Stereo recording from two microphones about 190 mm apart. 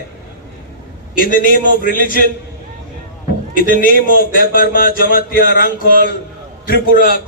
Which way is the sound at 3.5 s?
50° left (ahead or behind).